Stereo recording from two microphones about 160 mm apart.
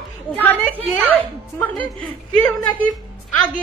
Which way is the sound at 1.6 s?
10° left (ahead or behind).